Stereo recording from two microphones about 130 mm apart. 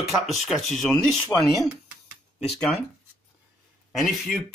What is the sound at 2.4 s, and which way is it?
Speech, 5° left (ahead or behind).